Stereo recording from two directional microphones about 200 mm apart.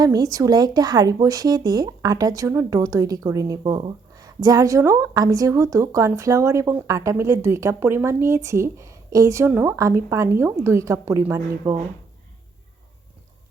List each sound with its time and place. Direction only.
0.0 s speech: 20° right (ahead or behind)